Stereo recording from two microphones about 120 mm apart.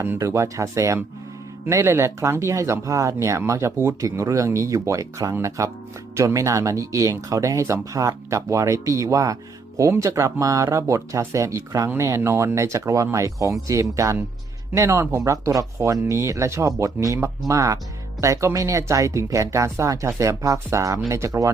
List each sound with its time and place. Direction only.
0.0 s speech: 20° right (ahead or behind)